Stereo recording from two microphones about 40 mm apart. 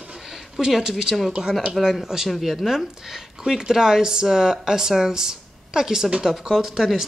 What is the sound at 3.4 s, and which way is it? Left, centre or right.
Speech, centre.